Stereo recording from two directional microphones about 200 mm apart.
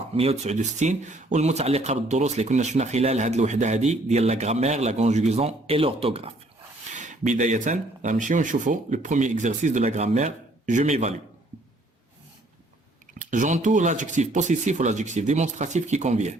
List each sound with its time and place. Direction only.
0.2 s speech: 30° right (ahead or behind)
13.1 s speech: 40° right (ahead or behind)